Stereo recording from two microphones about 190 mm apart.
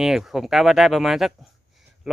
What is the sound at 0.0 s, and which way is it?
Speech, centre (ahead or behind).